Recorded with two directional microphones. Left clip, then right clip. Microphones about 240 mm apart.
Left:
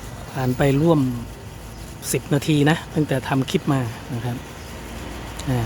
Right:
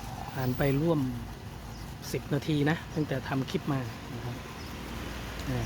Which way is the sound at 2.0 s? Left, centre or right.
Centre.